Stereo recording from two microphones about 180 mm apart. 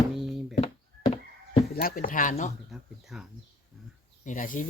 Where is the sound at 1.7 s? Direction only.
55° left (ahead or behind).